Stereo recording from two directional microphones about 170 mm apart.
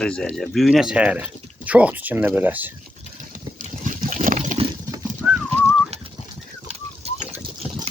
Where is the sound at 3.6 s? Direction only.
50° right (ahead or behind).